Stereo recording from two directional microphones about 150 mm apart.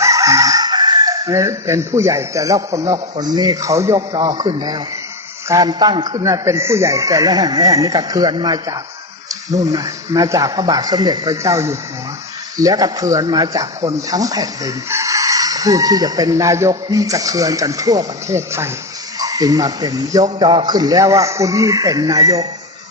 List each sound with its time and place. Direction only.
0.0 s speech: 20° right (ahead or behind)